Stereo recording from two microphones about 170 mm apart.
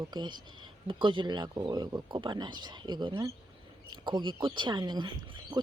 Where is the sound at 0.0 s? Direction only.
25° right (ahead or behind).